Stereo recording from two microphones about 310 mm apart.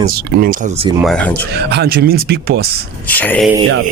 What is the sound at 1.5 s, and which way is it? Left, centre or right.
Speech, right.